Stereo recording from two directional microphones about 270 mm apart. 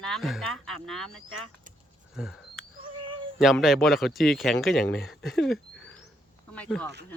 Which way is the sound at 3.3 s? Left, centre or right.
Centre.